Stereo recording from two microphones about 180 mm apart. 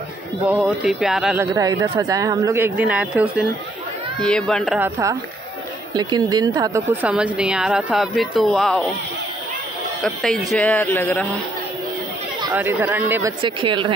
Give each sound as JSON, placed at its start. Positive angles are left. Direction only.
{"t": 0.5, "sound": "speech", "side_deg": 0}
{"t": 1.4, "sound": "speech", "side_deg": -20}
{"t": 4.2, "sound": "speech", "side_deg": 5}
{"t": 4.7, "sound": "speech", "side_deg": -15}
{"t": 10.0, "sound": "speech", "side_deg": 0}
{"t": 10.8, "sound": "speech", "side_deg": 10}
{"t": 12.5, "sound": "speech", "side_deg": -10}
{"t": 13.4, "sound": "speech", "side_deg": -25}